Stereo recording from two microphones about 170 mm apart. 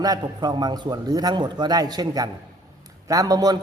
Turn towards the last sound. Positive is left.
turn(degrees=-20)  # may be behind; listen again after turning